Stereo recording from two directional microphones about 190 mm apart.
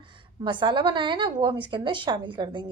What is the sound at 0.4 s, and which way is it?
A woman's voice, 25° right (ahead or behind).